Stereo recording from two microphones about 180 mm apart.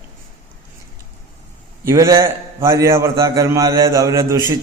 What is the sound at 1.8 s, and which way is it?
A man's voice, 15° right (ahead or behind).